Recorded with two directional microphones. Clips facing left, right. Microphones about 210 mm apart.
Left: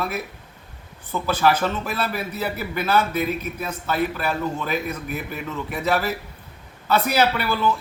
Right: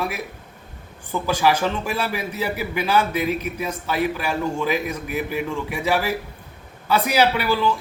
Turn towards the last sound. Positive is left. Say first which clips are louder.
# right 2 dB
turn(degrees=-15)  # may be behind; listen again after turning